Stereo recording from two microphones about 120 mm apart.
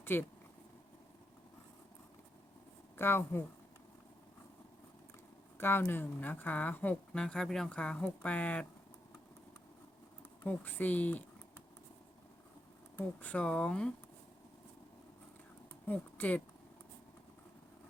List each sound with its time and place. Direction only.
0.0 s speech: 20° left (ahead or behind)
3.0 s speech: 20° left (ahead or behind)
5.5 s speech: 20° left (ahead or behind)
10.4 s speech: 15° left (ahead or behind)
13.0 s speech: 10° left (ahead or behind)
15.9 s speech: 15° left (ahead or behind)